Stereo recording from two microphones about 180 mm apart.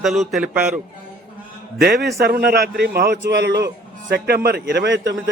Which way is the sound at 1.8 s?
65° right (ahead or behind).